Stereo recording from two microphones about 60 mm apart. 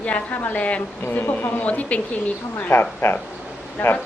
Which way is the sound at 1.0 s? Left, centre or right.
Left.